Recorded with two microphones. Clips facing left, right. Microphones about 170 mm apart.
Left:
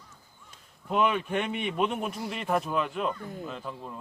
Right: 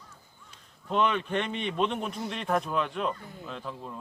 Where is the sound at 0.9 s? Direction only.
5° left (ahead or behind).